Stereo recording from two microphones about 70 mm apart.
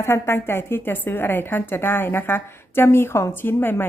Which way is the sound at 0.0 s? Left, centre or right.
Left.